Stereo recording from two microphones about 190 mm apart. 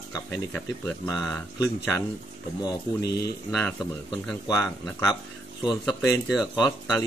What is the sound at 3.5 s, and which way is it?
Speech, 5° left (ahead or behind).